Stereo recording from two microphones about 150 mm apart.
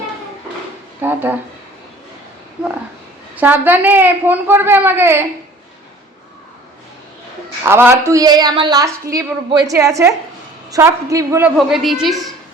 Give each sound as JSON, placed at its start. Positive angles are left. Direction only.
{"t": 1.0, "sound": "a woman's voice", "side_deg": -10}
{"t": 2.6, "sound": "a woman's voice", "side_deg": -5}
{"t": 7.6, "sound": "a woman's voice", "side_deg": -15}
{"t": 11.5, "sound": "a woman's voice", "side_deg": 0}